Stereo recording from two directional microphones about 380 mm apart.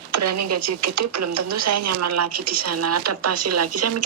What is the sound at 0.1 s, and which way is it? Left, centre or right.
Speech, right.